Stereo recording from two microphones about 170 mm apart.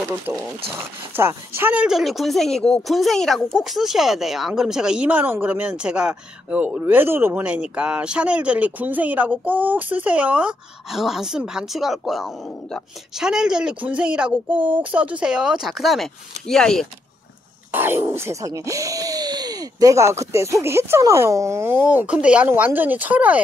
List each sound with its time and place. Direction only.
0.3 s speech: 10° right (ahead or behind)
17.6 s speech: 15° right (ahead or behind)